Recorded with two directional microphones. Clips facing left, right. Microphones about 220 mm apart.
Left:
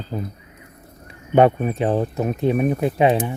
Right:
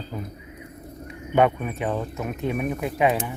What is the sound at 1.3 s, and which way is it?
Speech, 30° left (ahead or behind).